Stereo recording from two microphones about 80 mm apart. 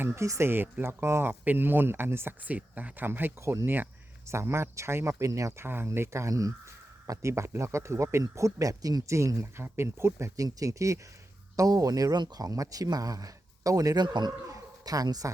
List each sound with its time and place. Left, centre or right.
0.0 s speech: right
9.0 s speech: right
14.4 s bow-wow: right